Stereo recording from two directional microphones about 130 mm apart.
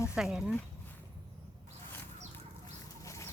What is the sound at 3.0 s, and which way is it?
Chicken, 20° left (ahead or behind).